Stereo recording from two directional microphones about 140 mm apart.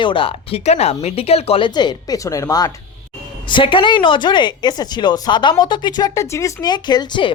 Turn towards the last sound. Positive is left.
turn(degrees=30)  # may be behind; listen again after turning